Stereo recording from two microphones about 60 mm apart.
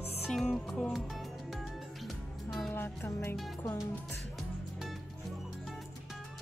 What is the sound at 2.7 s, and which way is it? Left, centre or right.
Music, left.